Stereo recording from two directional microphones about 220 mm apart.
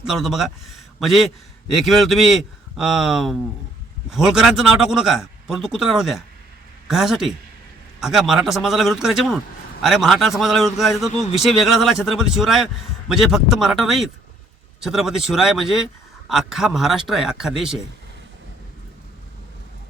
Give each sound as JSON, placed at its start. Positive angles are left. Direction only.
{"t": 0.0, "sound": "speech", "side_deg": 0}
{"t": 11.1, "sound": "speech", "side_deg": 30}
{"t": 11.4, "sound": "speech", "side_deg": 0}